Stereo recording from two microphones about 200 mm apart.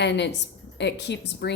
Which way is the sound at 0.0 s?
60° left (ahead or behind).